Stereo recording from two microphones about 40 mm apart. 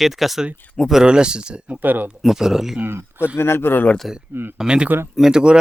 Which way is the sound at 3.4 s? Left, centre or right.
Left.